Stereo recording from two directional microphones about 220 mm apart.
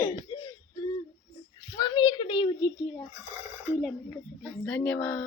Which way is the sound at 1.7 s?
20° left (ahead or behind).